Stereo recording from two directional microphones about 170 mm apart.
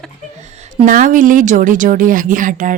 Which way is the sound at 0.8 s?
50° right (ahead or behind).